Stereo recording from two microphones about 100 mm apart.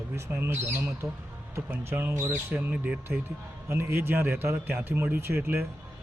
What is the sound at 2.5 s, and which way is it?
Speech, 15° right (ahead or behind).